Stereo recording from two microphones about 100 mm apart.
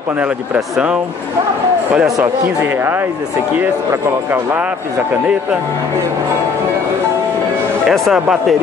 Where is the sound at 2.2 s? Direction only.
20° right (ahead or behind).